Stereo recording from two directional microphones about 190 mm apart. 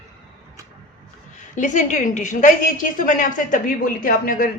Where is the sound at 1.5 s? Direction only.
40° left (ahead or behind).